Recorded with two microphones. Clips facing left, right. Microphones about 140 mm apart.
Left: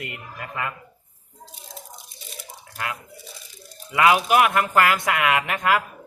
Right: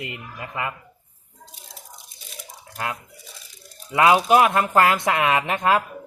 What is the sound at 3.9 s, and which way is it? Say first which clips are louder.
Speech: right 2 dB; 25° right (ahead or behind).